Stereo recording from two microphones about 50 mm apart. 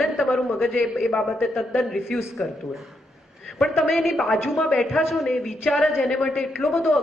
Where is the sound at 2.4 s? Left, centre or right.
Centre.